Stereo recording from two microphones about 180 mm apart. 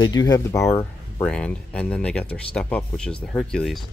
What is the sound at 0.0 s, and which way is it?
Speech, 20° left (ahead or behind).